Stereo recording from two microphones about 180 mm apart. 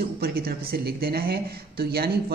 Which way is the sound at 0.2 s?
60° right (ahead or behind).